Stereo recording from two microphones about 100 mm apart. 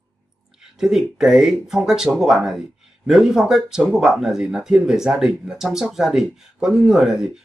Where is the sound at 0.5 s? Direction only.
5° right (ahead or behind).